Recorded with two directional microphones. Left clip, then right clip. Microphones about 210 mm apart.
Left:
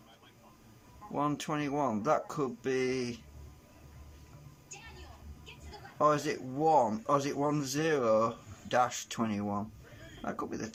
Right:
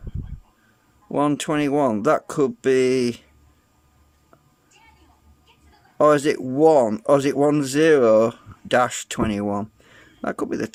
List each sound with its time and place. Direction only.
1.1 s speech: 50° right (ahead or behind)
6.0 s speech: 50° right (ahead or behind)